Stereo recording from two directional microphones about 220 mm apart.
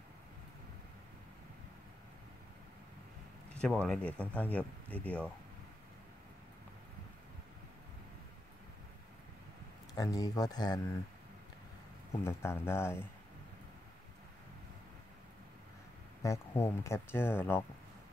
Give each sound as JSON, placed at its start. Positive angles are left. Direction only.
{"t": 3.6, "sound": "speech", "side_deg": 5}
{"t": 9.9, "sound": "speech", "side_deg": 15}
{"t": 12.1, "sound": "speech", "side_deg": 10}
{"t": 16.2, "sound": "speech", "side_deg": 10}